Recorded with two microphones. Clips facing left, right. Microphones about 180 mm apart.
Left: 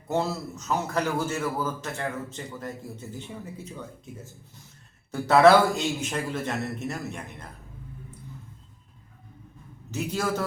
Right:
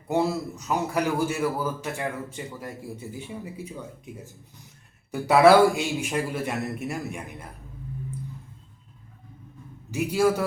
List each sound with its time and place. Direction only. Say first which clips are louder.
0.1 s a man's voice: right 3 dB; 10° right (ahead or behind)
9.9 s a man's voice: right 6 dB; 10° right (ahead or behind)